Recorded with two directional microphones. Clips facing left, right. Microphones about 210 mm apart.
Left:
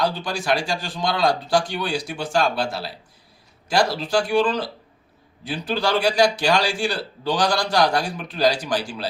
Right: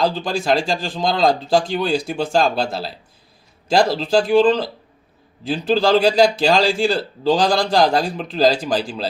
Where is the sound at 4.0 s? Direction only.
90° right.